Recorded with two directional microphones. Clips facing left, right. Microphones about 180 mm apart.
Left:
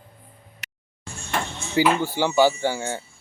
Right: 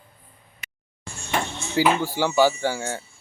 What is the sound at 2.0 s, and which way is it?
Speech, 15° left (ahead or behind).